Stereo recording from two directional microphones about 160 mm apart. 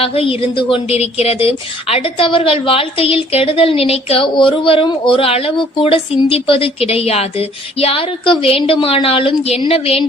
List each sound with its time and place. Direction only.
0.0 s a woman's voice: 35° left (ahead or behind)